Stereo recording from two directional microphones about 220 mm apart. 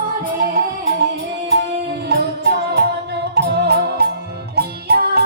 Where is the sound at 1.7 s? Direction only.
50° right (ahead or behind).